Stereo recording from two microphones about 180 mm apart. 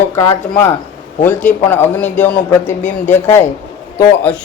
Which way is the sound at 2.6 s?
40° left (ahead or behind).